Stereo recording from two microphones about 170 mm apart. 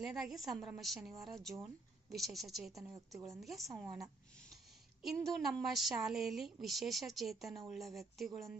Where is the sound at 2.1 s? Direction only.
Centre (ahead or behind).